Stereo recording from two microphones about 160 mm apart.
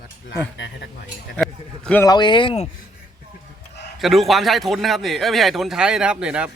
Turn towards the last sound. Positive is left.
turn(degrees=-5)  # may be behind; listen again after turning